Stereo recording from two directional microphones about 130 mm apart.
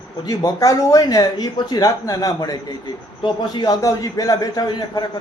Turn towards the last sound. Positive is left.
turn(degrees=30)  # may be behind; listen again after turning